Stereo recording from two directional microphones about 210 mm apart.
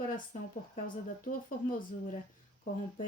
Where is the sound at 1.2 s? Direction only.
40° left (ahead or behind).